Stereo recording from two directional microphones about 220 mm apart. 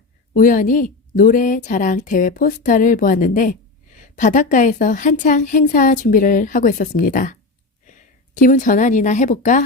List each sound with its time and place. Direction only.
0.3 s a woman's voice: 35° left (ahead or behind)